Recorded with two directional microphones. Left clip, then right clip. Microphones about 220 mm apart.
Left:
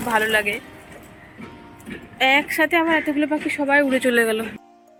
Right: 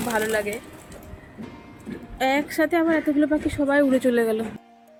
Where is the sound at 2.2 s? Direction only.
10° right (ahead or behind).